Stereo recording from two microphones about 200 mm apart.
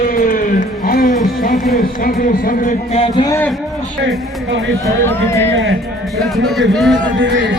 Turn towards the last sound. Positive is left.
turn(degrees=0)  # may be behind; listen again after turning